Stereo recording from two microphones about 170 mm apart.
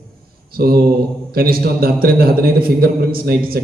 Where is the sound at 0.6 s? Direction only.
70° right (ahead or behind).